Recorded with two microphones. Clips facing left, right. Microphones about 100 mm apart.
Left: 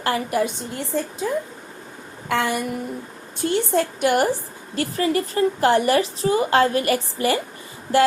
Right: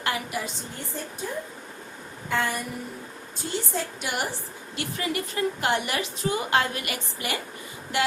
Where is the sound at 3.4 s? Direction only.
65° left (ahead or behind).